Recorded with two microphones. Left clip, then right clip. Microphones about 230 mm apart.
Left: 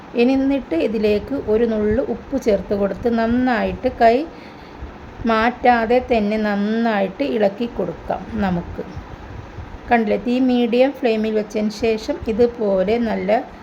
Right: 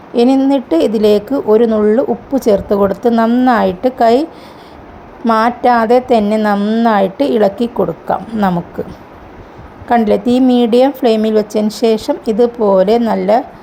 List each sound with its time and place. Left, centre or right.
0.2 s speech: centre
10.1 s speech: centre